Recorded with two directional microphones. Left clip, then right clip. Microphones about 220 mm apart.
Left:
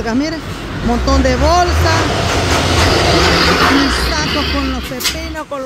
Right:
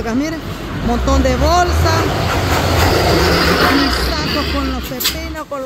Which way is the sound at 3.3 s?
25° left (ahead or behind).